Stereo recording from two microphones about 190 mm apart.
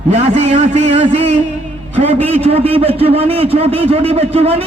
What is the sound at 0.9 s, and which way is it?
A man's voice, 30° right (ahead or behind).